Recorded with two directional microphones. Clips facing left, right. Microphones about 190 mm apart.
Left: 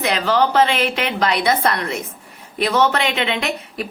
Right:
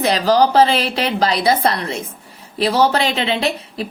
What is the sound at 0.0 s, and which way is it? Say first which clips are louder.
A woman's voice: right 3 dB; 35° right (ahead or behind).